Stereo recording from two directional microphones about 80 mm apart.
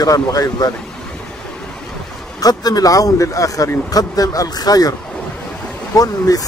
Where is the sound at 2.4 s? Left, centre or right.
Left.